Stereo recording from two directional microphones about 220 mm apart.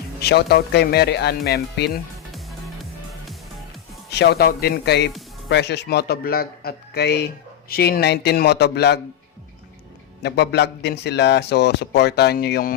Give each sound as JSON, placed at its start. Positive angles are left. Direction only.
{"t": 0.2, "sound": "a man's voice", "side_deg": 50}
{"t": 4.1, "sound": "a man's voice", "side_deg": 50}
{"t": 10.2, "sound": "a man's voice", "side_deg": 50}